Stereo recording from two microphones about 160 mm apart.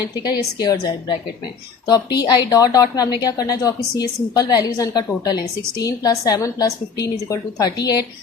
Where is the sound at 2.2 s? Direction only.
25° left (ahead or behind).